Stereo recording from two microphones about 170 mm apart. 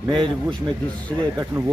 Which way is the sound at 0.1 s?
25° right (ahead or behind).